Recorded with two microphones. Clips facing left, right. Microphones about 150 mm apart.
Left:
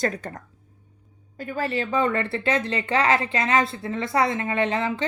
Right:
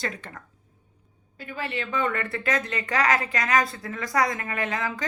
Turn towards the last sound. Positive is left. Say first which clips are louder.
# left 5 dB
turn(degrees=30)  # may be behind; listen again after turning